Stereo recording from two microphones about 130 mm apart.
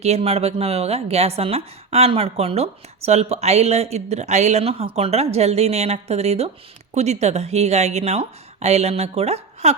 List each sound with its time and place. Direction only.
0.0 s a woman's voice: 55° right (ahead or behind)